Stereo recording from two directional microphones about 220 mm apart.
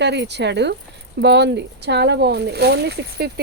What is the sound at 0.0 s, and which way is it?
Speech, 50° right (ahead or behind).